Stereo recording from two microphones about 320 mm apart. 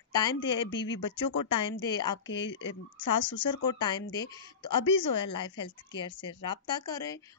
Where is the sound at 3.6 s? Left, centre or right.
Centre.